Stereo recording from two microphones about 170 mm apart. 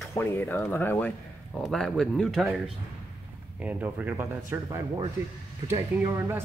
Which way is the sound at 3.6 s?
10° right (ahead or behind).